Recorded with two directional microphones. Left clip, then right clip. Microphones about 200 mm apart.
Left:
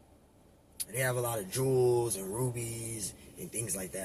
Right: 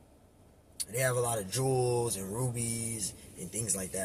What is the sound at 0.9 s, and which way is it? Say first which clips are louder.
Speech: right 2 dB; 25° right (ahead or behind).